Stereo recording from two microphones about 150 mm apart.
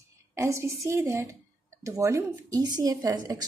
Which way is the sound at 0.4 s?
20° right (ahead or behind).